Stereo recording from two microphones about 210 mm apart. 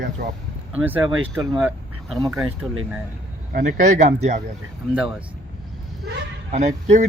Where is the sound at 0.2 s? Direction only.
50° right (ahead or behind).